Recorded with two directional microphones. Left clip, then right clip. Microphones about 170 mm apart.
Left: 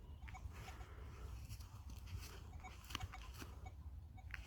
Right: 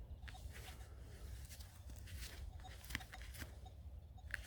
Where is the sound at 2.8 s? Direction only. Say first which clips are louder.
Right 2 dB; 40° right (ahead or behind).